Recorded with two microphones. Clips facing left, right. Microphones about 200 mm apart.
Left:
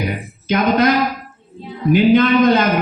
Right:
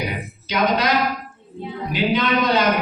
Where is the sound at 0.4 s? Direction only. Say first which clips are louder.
Left 6 dB; 50° left (ahead or behind).